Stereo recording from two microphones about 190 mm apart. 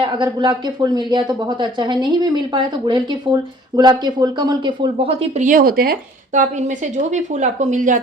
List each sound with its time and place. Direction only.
0.0 s speech: 25° right (ahead or behind)
5.5 s speech: 50° right (ahead or behind)